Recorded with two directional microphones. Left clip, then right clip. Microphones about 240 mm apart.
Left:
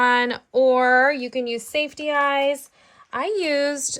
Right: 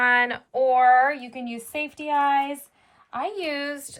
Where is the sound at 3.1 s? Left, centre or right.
Left.